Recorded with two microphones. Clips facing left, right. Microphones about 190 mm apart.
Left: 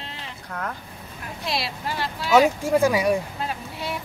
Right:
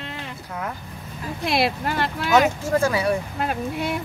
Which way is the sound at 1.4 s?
55° right (ahead or behind).